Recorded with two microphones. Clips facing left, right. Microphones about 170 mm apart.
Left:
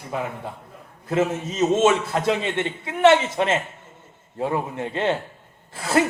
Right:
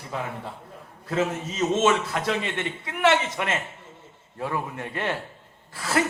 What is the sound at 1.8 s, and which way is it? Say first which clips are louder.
A man's voice: left 3 dB; 30° left (ahead or behind).